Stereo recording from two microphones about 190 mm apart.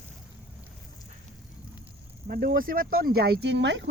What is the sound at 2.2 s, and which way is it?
Speech, 50° right (ahead or behind).